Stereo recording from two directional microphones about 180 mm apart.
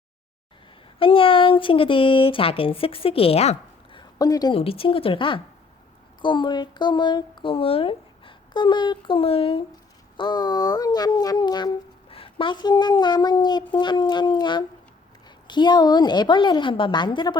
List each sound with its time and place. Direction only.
0.9 s speech: 30° left (ahead or behind)
4.2 s speech: 20° left (ahead or behind)